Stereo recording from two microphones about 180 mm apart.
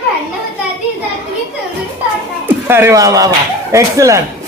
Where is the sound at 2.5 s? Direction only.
10° right (ahead or behind).